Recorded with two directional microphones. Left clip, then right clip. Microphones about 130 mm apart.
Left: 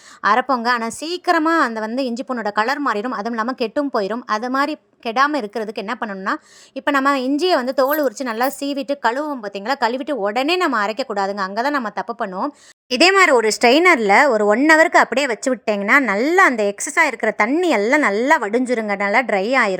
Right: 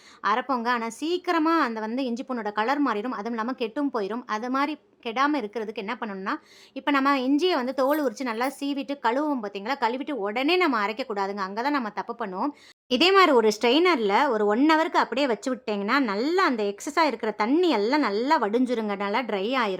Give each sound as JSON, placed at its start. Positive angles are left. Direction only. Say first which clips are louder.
{"t": 0.2, "sound": "a woman's voice", "louder": "left 8 dB", "side_deg": 45}